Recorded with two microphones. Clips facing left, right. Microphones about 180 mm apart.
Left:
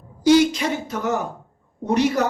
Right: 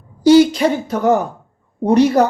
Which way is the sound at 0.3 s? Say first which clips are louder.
Right 6 dB; 30° right (ahead or behind).